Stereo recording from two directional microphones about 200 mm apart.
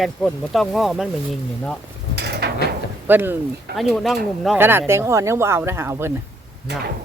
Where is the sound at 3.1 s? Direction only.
10° right (ahead or behind).